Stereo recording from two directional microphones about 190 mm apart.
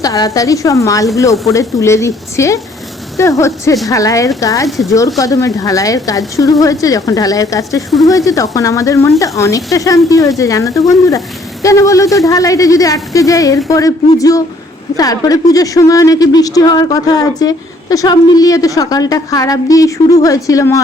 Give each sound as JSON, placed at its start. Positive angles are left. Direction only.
{"t": 0.0, "sound": "a woman's voice", "side_deg": 20}
{"t": 7.8, "sound": "speech", "side_deg": 0}
{"t": 8.0, "sound": "a woman's voice", "side_deg": 15}